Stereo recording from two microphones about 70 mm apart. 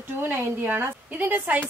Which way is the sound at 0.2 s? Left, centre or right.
Right.